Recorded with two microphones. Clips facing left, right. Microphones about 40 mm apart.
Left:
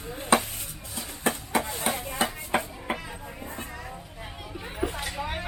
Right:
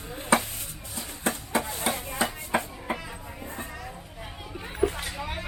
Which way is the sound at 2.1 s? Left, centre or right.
Left.